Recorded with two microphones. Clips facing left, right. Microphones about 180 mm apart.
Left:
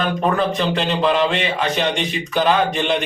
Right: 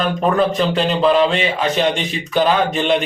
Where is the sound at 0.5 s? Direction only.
Centre (ahead or behind).